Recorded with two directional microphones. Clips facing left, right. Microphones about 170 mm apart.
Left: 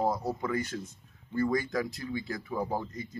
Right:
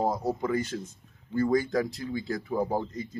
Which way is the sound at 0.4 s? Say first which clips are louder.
Right 3 dB; 25° right (ahead or behind).